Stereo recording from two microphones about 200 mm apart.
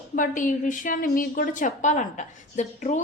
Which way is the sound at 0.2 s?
40° left (ahead or behind).